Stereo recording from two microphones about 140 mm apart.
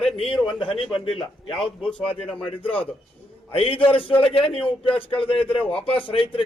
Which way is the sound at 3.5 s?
40° left (ahead or behind).